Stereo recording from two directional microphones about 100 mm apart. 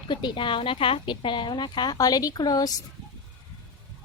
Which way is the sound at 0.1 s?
50° left (ahead or behind).